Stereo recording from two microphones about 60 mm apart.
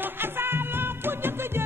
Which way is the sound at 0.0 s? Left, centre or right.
Right.